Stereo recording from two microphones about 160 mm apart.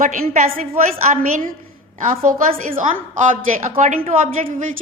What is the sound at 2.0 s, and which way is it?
A woman's voice, 55° right (ahead or behind).